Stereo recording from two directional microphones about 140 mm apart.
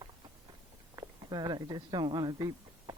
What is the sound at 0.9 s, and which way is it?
A woman's voice, 30° right (ahead or behind).